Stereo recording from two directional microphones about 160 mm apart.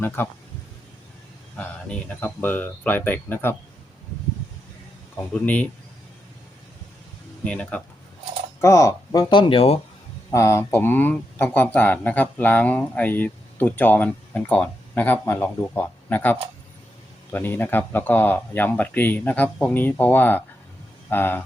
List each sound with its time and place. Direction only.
0.2 s speech: 15° left (ahead or behind)
1.5 s speech: 10° left (ahead or behind)
5.1 s speech: 10° left (ahead or behind)
7.4 s speech: 5° left (ahead or behind)
8.6 s speech: 20° left (ahead or behind); by 9.8 s 35° left (ahead or behind)
10.3 s speech: 20° left (ahead or behind)